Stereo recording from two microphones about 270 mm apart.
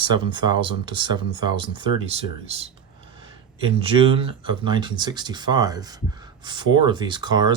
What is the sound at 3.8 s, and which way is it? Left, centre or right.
Speech, right.